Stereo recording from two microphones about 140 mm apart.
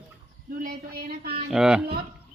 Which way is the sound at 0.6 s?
90° right.